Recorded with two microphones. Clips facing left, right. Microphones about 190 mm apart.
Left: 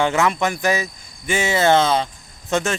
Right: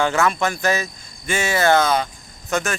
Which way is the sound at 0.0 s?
20° left (ahead or behind).